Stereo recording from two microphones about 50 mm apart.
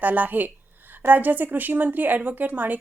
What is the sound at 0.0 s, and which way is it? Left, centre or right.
A woman's voice, right.